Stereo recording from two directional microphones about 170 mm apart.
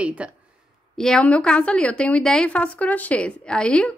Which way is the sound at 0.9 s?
5° left (ahead or behind).